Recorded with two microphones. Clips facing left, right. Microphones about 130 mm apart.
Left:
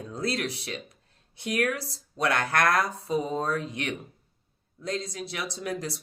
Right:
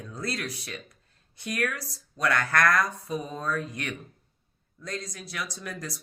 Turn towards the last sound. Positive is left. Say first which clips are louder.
# left 5 dB
turn(degrees=25)  # may be behind; listen again after turning